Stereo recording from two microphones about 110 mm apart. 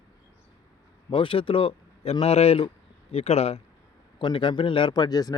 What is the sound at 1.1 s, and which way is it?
Speech, 55° left (ahead or behind).